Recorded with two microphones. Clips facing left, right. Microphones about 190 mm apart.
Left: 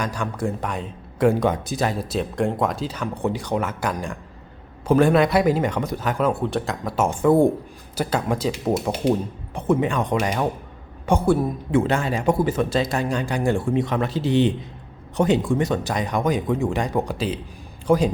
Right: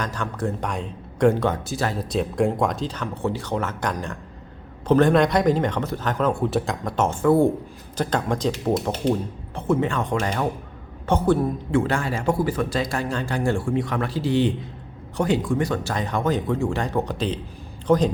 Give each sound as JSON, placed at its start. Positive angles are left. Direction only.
{"t": 0.0, "sound": "speech", "side_deg": 10}
{"t": 2.0, "sound": "speech", "side_deg": 0}
{"t": 11.8, "sound": "speech", "side_deg": 20}